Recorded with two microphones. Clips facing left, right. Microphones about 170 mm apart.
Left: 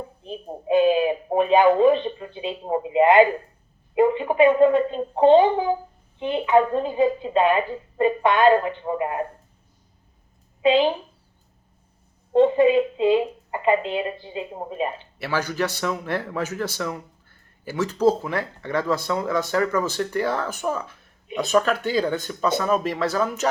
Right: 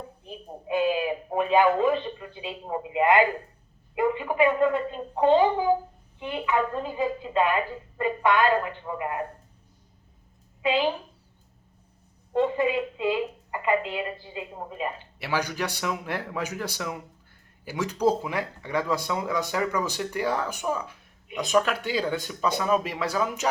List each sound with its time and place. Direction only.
0.2 s a sound: 20° left (ahead or behind)
3.9 s speech: 20° left (ahead or behind)
10.6 s a woman's voice: 20° left (ahead or behind)
12.3 s speech: 20° left (ahead or behind)
15.2 s a man's voice: 15° right (ahead or behind)